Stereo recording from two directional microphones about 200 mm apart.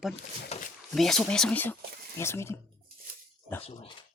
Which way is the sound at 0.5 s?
30° left (ahead or behind).